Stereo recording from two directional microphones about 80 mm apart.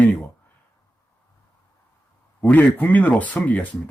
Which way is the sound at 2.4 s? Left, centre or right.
Left.